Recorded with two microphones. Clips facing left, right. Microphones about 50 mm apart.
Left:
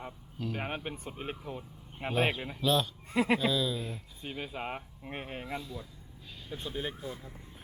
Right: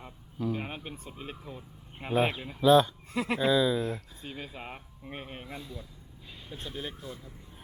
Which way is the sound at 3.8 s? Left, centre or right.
Right.